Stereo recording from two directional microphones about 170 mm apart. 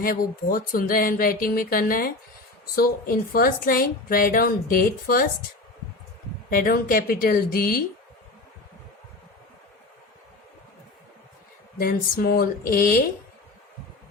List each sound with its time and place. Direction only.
0.0 s a woman's voice: 55° left (ahead or behind)
6.5 s a woman's voice: 55° left (ahead or behind)
11.8 s a woman's voice: 55° left (ahead or behind)